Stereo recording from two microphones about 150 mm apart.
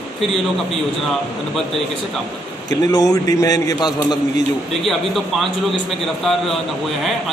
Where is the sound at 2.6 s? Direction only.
25° left (ahead or behind).